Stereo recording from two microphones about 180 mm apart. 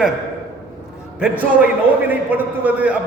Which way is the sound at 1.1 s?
5° right (ahead or behind).